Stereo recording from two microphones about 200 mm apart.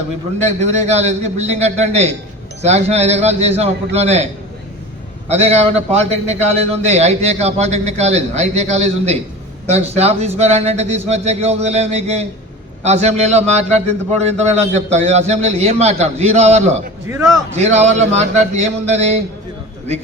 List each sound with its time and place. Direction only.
0.3 s a man's voice: 35° right (ahead or behind)
5.3 s a man's voice: 30° right (ahead or behind)